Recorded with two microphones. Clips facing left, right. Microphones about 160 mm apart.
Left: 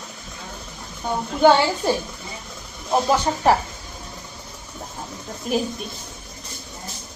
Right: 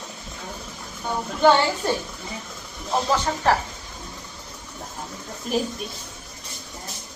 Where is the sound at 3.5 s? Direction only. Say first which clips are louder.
Left 3 dB; 15° left (ahead or behind).